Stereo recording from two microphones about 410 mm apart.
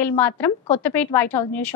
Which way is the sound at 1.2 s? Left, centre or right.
Left.